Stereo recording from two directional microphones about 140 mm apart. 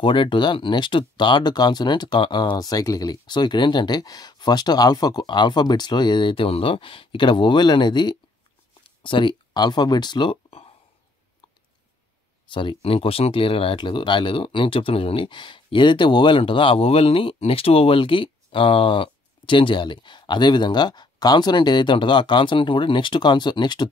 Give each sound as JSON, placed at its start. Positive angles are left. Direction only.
{"t": 0.0, "sound": "speech", "side_deg": 35}
{"t": 8.8, "sound": "a sound", "side_deg": 35}
{"t": 9.5, "sound": "speech", "side_deg": 30}
{"t": 12.4, "sound": "speech", "side_deg": 35}